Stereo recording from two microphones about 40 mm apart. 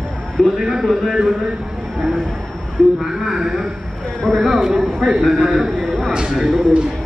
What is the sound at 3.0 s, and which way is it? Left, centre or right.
Speech, centre.